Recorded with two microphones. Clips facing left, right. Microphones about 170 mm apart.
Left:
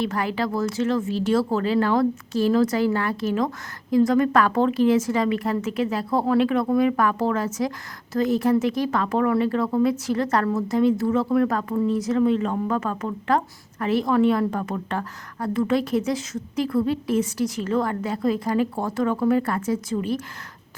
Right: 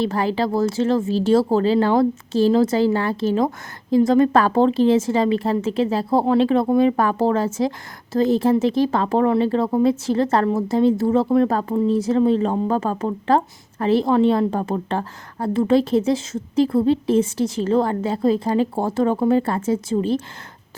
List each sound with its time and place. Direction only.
0.0 s speech: 30° right (ahead or behind)